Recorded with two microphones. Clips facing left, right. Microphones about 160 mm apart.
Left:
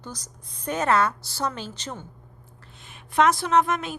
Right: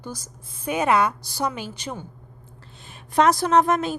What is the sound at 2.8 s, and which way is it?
A woman's voice, 35° right (ahead or behind).